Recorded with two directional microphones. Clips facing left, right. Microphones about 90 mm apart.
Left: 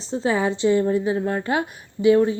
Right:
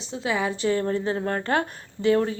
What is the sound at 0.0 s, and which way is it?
A woman's voice, 35° left (ahead or behind).